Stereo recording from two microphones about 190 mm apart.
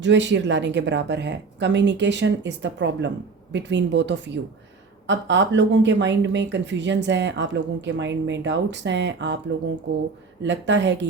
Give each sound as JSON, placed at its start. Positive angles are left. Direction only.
{"t": 0.0, "sound": "speech", "side_deg": -70}
{"t": 10.4, "sound": "speech", "side_deg": -70}